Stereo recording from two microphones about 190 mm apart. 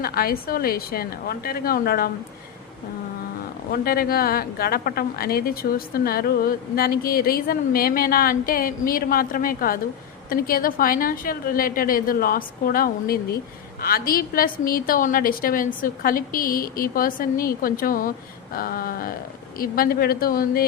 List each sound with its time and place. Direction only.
0.0 s a woman's voice: 50° left (ahead or behind)
3.7 s a woman's voice: 50° left (ahead or behind)